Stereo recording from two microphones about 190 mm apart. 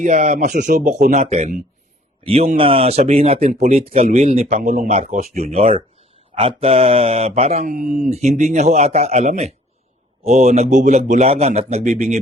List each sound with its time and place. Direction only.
0.0 s speech: 40° right (ahead or behind)
3.4 s speech: 45° right (ahead or behind)
3.9 s speech: 35° right (ahead or behind)
4.9 s speech: 35° right (ahead or behind)